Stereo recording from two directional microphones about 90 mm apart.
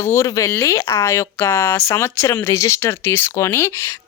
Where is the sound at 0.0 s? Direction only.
25° left (ahead or behind).